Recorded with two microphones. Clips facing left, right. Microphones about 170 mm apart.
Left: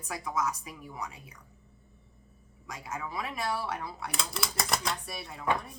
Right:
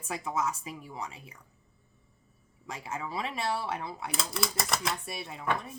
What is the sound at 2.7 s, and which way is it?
Speech, 25° right (ahead or behind).